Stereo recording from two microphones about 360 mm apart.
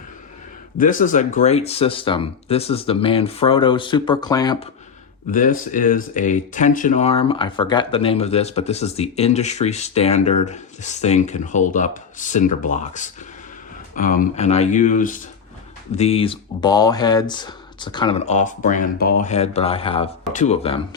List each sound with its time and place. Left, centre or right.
0.8 s speech: left
5.3 s speech: left